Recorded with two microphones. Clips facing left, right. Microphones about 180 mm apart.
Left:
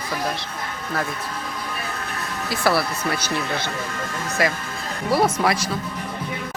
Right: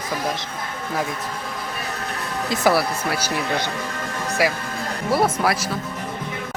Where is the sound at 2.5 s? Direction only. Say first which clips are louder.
Right 2 dB; 15° right (ahead or behind).